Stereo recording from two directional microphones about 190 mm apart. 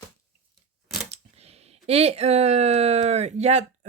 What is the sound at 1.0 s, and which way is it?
Speech, 35° right (ahead or behind).